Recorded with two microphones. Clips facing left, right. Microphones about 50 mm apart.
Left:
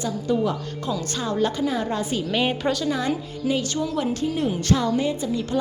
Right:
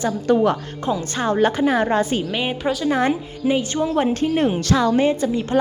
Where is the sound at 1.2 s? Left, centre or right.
Right.